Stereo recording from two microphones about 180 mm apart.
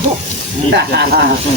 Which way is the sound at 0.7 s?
65° right (ahead or behind).